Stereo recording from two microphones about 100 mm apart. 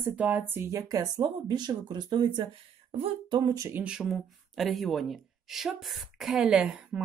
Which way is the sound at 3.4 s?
35° right (ahead or behind).